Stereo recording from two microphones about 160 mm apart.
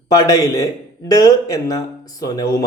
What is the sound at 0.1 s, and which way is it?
A man's voice, 25° left (ahead or behind).